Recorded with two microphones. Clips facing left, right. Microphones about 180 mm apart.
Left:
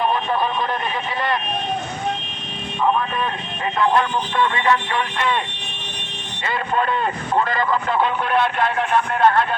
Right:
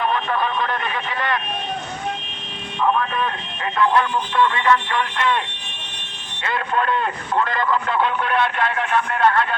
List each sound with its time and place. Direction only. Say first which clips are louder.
4.5 s speech: right 1 dB; 20° left (ahead or behind)
7.3 s speech: left 1 dB; 10° left (ahead or behind)
9.1 s speech: left 2 dB; 40° left (ahead or behind)